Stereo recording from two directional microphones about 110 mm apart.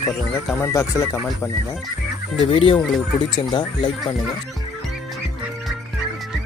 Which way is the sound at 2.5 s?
50° left (ahead or behind).